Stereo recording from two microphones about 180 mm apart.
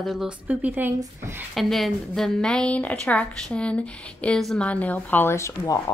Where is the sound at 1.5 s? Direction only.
Centre (ahead or behind).